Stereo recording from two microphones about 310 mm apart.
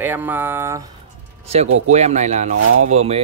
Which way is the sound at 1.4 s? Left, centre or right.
Centre.